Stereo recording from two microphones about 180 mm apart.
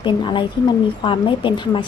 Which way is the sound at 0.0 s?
25° left (ahead or behind).